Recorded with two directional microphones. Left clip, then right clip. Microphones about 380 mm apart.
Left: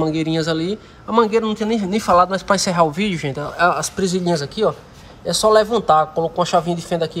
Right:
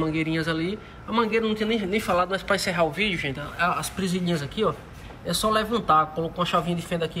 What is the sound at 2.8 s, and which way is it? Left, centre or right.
Speech, left.